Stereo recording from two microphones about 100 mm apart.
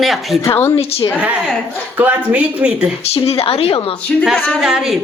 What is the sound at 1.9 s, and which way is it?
Speech, 20° right (ahead or behind).